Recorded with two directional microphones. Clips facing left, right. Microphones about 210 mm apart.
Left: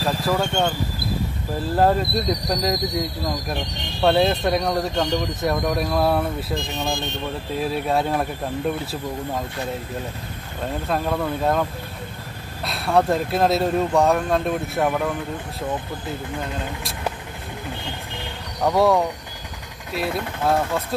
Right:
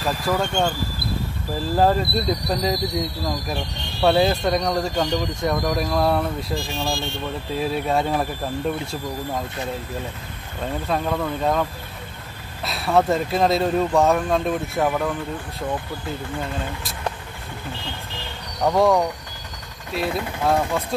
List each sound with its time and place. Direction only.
0.3 s speech: centre (ahead or behind)
6.5 s speech: 20° left (ahead or behind)
7.5 s speech: centre (ahead or behind)
10.9 s speech: 5° left (ahead or behind)
12.6 s speech: centre (ahead or behind)
18.6 s speech: centre (ahead or behind)